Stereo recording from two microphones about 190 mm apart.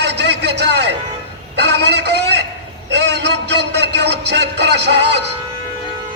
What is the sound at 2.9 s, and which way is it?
Music, 60° right (ahead or behind).